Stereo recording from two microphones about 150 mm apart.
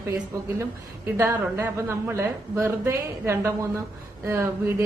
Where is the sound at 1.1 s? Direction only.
20° right (ahead or behind).